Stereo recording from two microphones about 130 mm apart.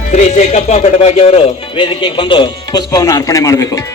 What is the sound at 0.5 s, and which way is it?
Speech, 60° left (ahead or behind).